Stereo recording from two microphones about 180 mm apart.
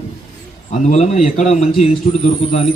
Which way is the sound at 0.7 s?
40° left (ahead or behind).